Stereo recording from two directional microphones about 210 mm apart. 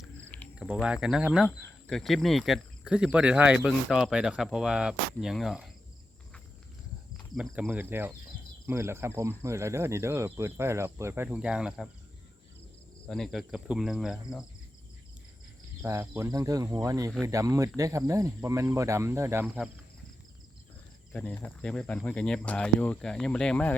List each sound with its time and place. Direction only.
0.0 s a sound: 5° left (ahead or behind)
0.5 s speech: 5° right (ahead or behind)
7.3 s speech: centre (ahead or behind)
13.1 s speech: centre (ahead or behind)
15.8 s speech: 15° right (ahead or behind)
21.1 s speech: 5° left (ahead or behind)